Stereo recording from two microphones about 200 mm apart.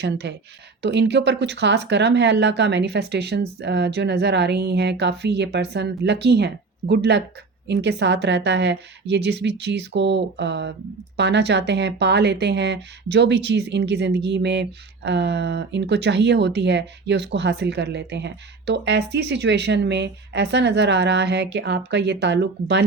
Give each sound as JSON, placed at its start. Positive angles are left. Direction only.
{"t": 0.0, "sound": "speech", "side_deg": -60}